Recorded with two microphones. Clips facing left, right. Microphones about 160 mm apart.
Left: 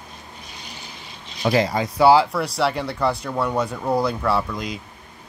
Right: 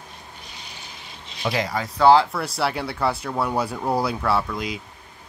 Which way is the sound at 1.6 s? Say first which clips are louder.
Left 4 dB; 20° left (ahead or behind).